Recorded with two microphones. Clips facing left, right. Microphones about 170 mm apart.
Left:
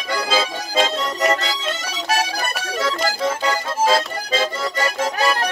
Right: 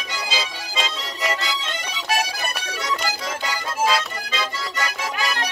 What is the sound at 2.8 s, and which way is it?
Music, 50° left (ahead or behind).